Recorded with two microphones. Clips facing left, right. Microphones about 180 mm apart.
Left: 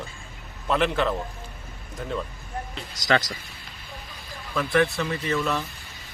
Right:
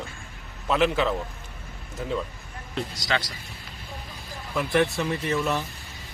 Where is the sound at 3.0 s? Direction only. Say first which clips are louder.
Left 8 dB; 45° left (ahead or behind).